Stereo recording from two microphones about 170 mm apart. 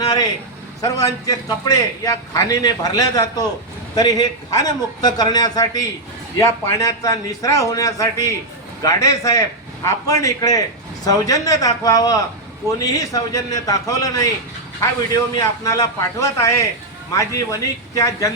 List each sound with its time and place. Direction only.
0.8 s a man's voice: 20° left (ahead or behind)